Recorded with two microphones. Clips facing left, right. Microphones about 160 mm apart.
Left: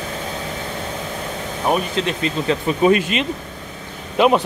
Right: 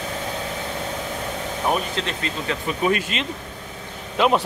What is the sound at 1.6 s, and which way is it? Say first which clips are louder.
Speech: left 5 dB; 15° left (ahead or behind).